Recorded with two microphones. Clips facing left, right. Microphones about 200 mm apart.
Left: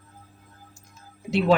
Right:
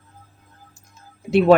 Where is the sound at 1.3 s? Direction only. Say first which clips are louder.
Right 7 dB; 55° right (ahead or behind).